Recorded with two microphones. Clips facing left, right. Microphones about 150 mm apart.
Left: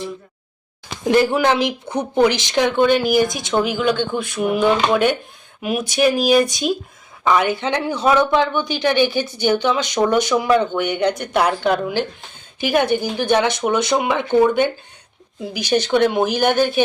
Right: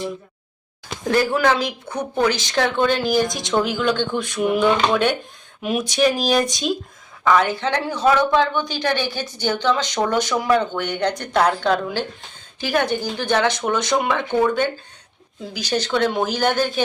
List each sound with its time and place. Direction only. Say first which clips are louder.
1.1 s speech: left 2 dB; 20° left (ahead or behind); by 4.6 s 5° left (ahead or behind)
5.6 s speech: left 1 dB; 5° left (ahead or behind)
7.3 s speech: left 1 dB; 15° left (ahead or behind)